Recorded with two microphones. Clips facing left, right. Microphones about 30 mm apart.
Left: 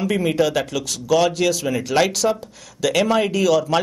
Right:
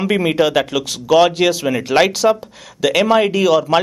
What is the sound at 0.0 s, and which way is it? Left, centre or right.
Speech, right.